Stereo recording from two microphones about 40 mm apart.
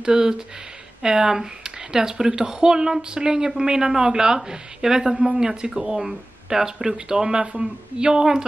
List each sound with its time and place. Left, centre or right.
0.0 s speech: centre